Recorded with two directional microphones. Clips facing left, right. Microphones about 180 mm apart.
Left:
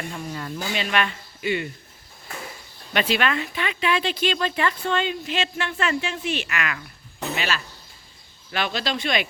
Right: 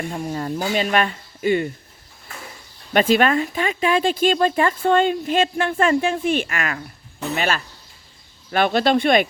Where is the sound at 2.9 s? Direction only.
45° right (ahead or behind).